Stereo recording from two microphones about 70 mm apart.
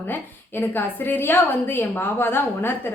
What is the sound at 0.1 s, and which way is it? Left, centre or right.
A woman's voice, left.